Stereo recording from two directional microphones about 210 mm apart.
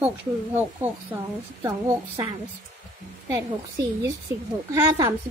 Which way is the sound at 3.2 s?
15° right (ahead or behind).